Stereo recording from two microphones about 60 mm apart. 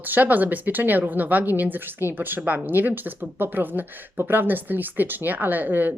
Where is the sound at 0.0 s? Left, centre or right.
Right.